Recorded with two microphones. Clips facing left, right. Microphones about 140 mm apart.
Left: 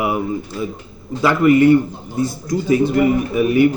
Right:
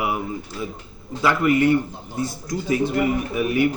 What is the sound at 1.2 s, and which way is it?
Speech, 35° left (ahead or behind).